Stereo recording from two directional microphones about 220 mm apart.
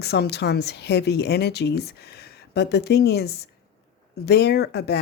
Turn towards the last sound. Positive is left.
turn(degrees=50)  # may be behind; listen again after turning